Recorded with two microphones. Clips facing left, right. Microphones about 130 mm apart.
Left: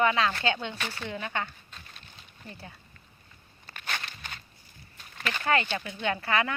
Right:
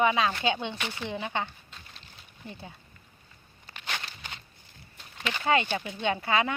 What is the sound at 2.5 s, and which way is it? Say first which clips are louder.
Speech: right 2 dB; 15° right (ahead or behind).